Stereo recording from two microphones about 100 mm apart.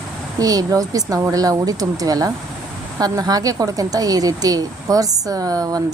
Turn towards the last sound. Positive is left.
turn(degrees=-35)  # may be behind; listen again after turning